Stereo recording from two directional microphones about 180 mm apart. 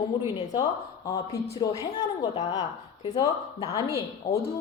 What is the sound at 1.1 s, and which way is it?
A woman's voice, 20° left (ahead or behind).